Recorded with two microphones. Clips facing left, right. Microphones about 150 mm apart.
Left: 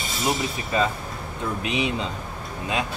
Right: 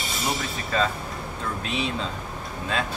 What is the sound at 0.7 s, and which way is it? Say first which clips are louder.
Speech: left 1 dB; 15° left (ahead or behind).